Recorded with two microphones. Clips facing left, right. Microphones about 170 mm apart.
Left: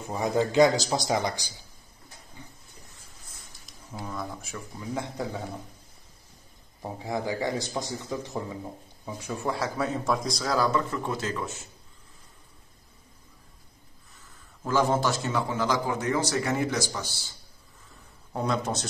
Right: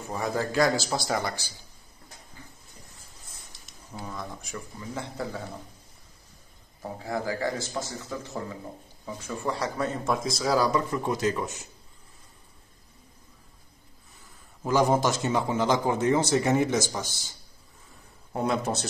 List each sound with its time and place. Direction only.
0.1 s speech: 20° left (ahead or behind)
3.5 s a sound: 80° right
4.0 s speech: centre (ahead or behind)
6.8 s a man's voice: 20° left (ahead or behind); by 11.6 s 15° right (ahead or behind)
14.6 s a man's voice: 15° right (ahead or behind)
18.3 s speech: 5° right (ahead or behind)